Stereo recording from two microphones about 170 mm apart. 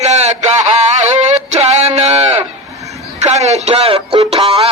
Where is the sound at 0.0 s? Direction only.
40° right (ahead or behind).